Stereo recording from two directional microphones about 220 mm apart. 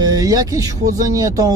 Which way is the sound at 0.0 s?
15° right (ahead or behind).